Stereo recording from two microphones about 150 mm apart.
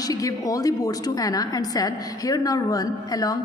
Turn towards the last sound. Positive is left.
turn(degrees=25)  # may be behind; listen again after turning